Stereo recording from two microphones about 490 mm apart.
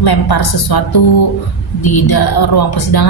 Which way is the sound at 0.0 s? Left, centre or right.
Left.